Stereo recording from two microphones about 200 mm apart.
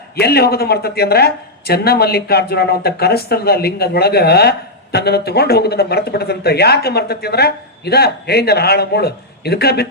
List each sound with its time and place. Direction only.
0.2 s speech: 55° left (ahead or behind)